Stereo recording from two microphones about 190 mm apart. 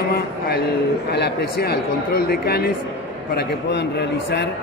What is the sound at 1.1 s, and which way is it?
Speech, 60° left (ahead or behind).